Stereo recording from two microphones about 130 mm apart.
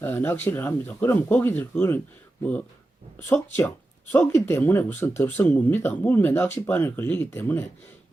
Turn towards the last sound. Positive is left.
turn(degrees=15)  # may be behind; listen again after turning